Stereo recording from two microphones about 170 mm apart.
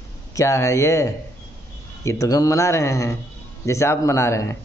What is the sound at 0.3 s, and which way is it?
Speech, 20° left (ahead or behind).